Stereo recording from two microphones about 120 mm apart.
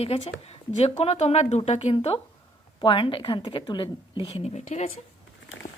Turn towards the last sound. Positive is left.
turn(degrees=70)  # may be behind; listen again after turning